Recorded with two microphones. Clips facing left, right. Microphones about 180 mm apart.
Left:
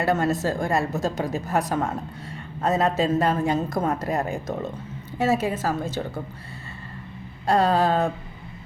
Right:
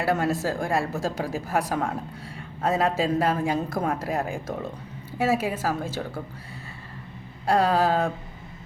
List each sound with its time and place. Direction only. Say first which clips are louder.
0.0 s a woman's voice: left 2 dB; 10° right (ahead or behind)
7.4 s a woman's voice: left 1 dB; 10° right (ahead or behind)